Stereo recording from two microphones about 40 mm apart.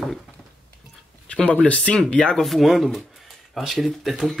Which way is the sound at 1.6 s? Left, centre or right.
Left.